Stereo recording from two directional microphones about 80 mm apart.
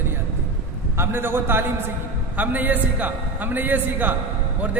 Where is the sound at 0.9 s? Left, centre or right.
Right.